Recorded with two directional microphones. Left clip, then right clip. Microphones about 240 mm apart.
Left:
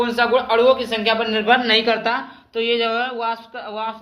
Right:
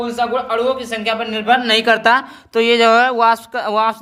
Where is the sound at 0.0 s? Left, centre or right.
Centre.